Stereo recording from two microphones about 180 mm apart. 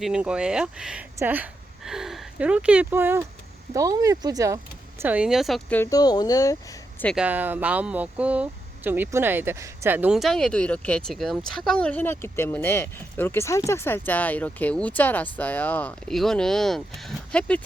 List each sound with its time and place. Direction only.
0.0 s speech: 5° right (ahead or behind)
5.9 s speech: 20° left (ahead or behind)
7.2 s speech: 10° right (ahead or behind)